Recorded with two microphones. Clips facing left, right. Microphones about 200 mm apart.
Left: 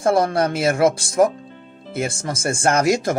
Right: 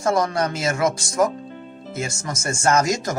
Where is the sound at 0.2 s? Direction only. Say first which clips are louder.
Left 4 dB; 55° left (ahead or behind).